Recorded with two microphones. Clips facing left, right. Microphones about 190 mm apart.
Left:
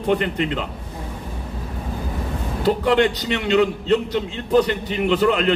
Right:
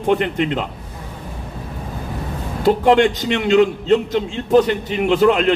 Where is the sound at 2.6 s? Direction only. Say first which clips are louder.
Right 4 dB; 45° right (ahead or behind).